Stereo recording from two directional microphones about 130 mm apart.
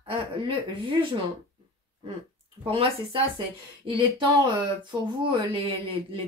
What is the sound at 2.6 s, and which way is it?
Speech, 45° right (ahead or behind).